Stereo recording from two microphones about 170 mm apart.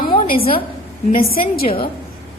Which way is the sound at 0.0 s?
60° left (ahead or behind).